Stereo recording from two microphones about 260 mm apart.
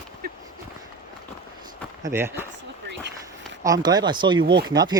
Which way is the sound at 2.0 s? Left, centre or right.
Centre.